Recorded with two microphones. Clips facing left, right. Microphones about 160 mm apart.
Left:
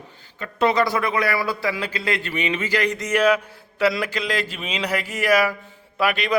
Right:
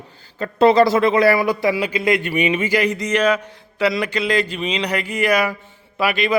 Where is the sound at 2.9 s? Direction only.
Centre (ahead or behind).